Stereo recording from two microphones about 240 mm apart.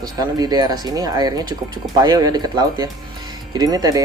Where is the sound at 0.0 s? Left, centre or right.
Centre.